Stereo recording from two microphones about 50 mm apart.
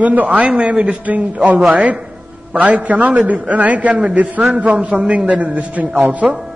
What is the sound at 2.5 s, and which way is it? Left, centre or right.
A man's voice, right.